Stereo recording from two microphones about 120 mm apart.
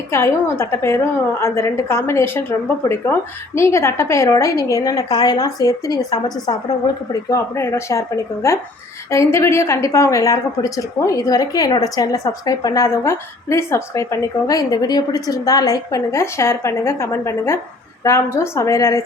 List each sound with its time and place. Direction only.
0.1 s a woman's voice: 20° left (ahead or behind); by 7.3 s 35° left (ahead or behind)
7.3 s a woman's voice: 25° left (ahead or behind)